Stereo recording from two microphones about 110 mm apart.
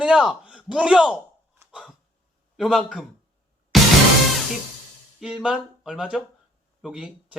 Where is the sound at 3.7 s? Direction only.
Centre (ahead or behind).